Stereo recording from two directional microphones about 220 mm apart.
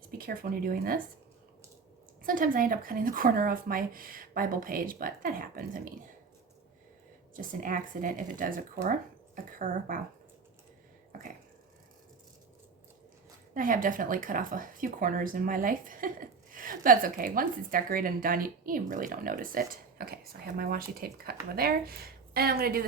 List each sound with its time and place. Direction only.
0.1 s speech: 40° right (ahead or behind)
2.2 s speech: 40° right (ahead or behind)
7.3 s speech: 40° right (ahead or behind)
13.5 s speech: 40° right (ahead or behind)